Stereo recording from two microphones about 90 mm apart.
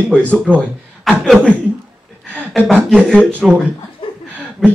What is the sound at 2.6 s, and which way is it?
Speech, 5° left (ahead or behind).